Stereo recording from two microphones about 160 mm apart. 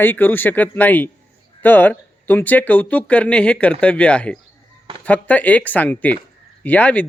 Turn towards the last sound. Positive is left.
turn(degrees=10)  # may be behind; listen again after turning